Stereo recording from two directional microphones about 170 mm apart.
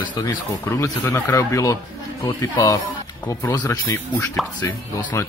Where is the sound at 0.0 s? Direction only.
25° left (ahead or behind).